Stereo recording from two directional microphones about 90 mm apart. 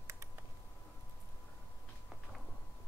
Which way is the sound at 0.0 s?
30° right (ahead or behind).